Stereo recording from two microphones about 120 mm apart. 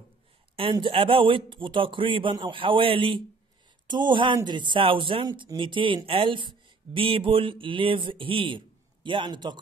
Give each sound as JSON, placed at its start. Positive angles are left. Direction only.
{"t": 0.6, "sound": "speech", "side_deg": -45}